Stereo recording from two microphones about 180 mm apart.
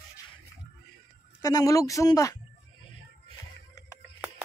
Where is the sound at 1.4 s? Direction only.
20° left (ahead or behind).